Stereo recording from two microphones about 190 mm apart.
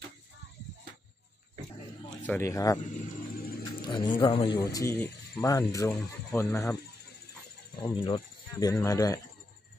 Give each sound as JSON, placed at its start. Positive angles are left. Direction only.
{"t": 2.2, "sound": "speech", "side_deg": 15}
{"t": 2.9, "sound": "a sound", "side_deg": 45}
{"t": 3.8, "sound": "speech", "side_deg": 25}
{"t": 4.7, "sound": "speech", "side_deg": 10}
{"t": 7.8, "sound": "speech", "side_deg": 20}